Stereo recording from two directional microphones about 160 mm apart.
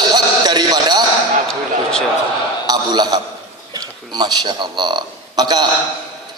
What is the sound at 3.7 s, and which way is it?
A man's voice, 25° right (ahead or behind).